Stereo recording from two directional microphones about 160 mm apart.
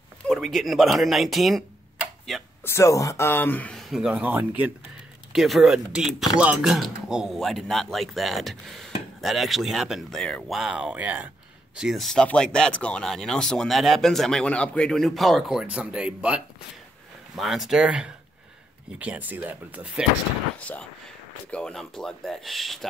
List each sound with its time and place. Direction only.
0.3 s speech: centre (ahead or behind)
2.6 s speech: 15° left (ahead or behind); by 20.1 s 10° right (ahead or behind)
20.5 s speech: 10° left (ahead or behind)